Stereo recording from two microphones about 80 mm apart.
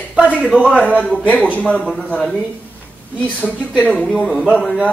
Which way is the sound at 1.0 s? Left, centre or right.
Centre.